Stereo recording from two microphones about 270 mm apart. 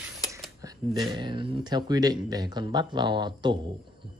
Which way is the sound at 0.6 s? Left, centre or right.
Centre.